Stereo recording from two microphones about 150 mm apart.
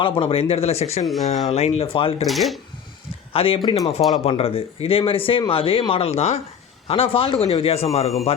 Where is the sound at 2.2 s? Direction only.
Centre (ahead or behind).